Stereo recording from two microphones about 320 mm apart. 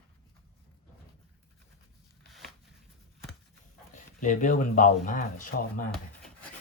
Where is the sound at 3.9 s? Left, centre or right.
Left.